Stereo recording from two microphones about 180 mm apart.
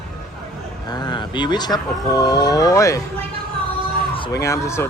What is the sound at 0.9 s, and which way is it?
Speech, 25° left (ahead or behind).